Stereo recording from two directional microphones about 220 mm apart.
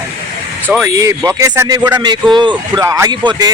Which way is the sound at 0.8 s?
15° right (ahead or behind).